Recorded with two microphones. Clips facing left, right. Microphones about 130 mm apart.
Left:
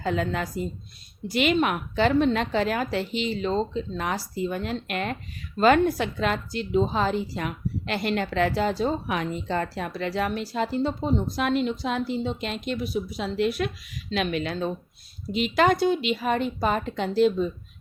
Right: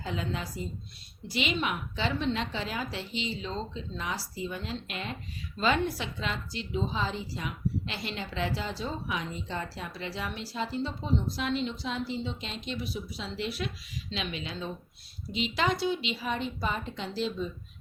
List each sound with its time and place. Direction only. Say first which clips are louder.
0.0 s a woman's voice: left 8 dB; 55° left (ahead or behind)